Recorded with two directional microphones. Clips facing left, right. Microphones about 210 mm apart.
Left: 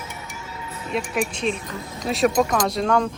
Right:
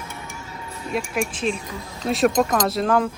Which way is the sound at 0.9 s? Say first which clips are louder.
Even; centre (ahead or behind).